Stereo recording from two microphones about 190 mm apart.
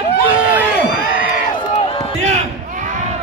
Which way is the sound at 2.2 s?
35° right (ahead or behind).